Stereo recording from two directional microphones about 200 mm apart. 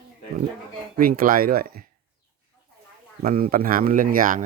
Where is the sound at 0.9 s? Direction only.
45° right (ahead or behind).